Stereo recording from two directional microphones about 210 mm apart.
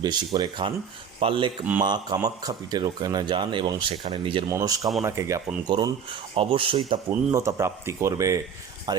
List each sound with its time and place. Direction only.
0.0 s a man's voice: 20° right (ahead or behind)
7.1 s a man's voice: 15° right (ahead or behind)